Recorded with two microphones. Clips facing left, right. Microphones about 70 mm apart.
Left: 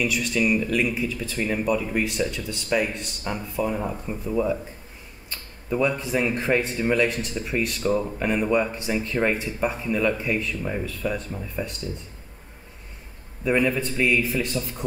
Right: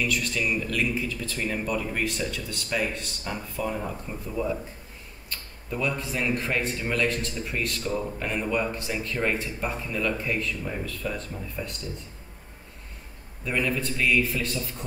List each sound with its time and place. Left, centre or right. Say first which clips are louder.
0.0 s a man's voice: left 4 dB; centre
1.9 s a man's voice: left 4 dB; centre
5.7 s a man's voice: left 6 dB; left
13.4 s a man's voice: left 5 dB; centre